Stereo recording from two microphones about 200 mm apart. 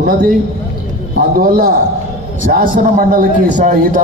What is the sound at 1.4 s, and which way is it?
A man's voice, 45° right (ahead or behind).